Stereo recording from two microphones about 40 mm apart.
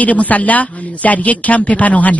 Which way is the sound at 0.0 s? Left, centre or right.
Left.